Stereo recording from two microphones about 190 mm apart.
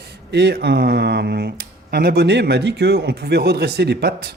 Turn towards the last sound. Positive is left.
turn(degrees=-60)  # may be behind; listen again after turning